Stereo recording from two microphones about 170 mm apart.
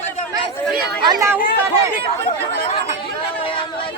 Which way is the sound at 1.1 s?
15° right (ahead or behind).